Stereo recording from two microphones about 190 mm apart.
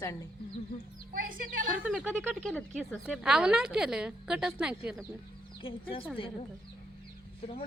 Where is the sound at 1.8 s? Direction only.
5° right (ahead or behind).